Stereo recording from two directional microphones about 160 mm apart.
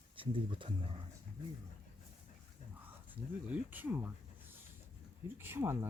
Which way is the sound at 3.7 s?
10° right (ahead or behind).